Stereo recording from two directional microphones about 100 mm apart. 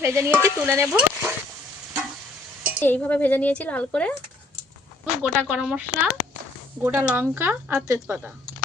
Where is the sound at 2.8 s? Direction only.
20° left (ahead or behind).